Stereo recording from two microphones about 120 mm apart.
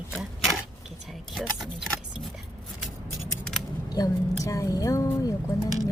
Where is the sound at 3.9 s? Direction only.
30° left (ahead or behind).